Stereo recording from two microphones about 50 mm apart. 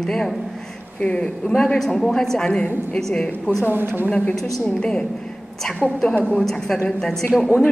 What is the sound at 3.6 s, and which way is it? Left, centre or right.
Speech, right.